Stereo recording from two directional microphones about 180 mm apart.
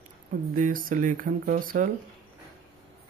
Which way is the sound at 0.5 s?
50° right (ahead or behind).